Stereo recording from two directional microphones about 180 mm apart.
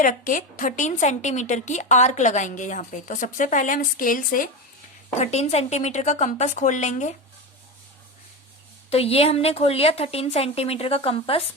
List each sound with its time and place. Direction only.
0.0 s a woman's voice: 45° left (ahead or behind)
5.1 s a woman's voice: 35° left (ahead or behind)
8.9 s a woman's voice: 35° left (ahead or behind)